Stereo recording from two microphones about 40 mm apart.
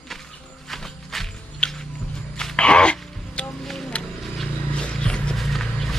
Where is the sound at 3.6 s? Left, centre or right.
Centre.